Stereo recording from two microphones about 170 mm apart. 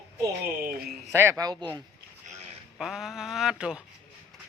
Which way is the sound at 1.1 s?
20° right (ahead or behind).